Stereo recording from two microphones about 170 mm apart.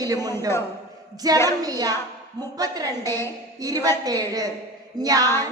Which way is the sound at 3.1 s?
15° left (ahead or behind).